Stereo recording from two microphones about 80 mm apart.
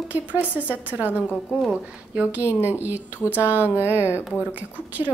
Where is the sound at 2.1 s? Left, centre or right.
Right.